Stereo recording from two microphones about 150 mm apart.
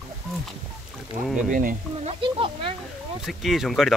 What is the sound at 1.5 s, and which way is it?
Speech, 65° right (ahead or behind).